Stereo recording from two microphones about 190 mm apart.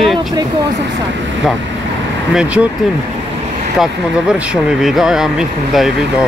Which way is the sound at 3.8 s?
5° right (ahead or behind).